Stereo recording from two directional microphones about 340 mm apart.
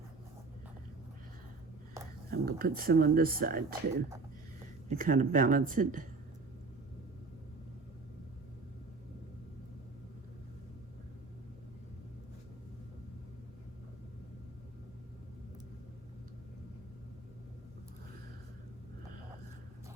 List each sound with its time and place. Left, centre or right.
2.3 s speech: right
4.9 s speech: right